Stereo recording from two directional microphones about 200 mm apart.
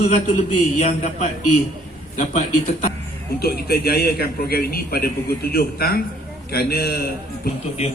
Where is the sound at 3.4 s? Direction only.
50° left (ahead or behind).